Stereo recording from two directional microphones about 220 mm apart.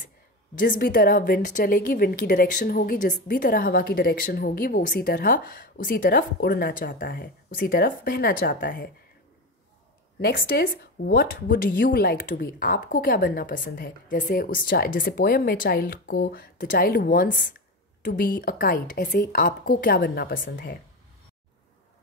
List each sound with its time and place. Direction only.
0.6 s a woman's voice: 40° left (ahead or behind)
10.2 s a woman's voice: 45° left (ahead or behind)